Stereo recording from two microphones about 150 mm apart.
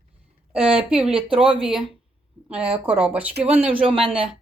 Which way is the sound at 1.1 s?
35° right (ahead or behind).